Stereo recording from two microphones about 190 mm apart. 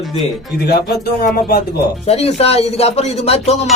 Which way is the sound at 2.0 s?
30° left (ahead or behind).